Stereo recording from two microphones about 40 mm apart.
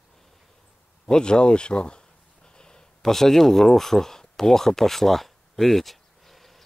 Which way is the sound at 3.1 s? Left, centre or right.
Centre.